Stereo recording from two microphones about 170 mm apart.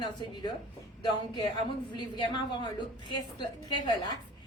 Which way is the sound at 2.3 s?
25° left (ahead or behind).